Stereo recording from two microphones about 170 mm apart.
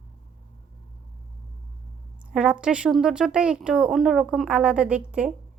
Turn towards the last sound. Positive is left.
turn(degrees=-5)  # may be behind; listen again after turning